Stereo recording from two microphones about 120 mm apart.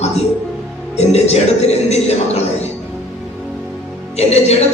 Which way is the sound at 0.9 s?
65° left (ahead or behind).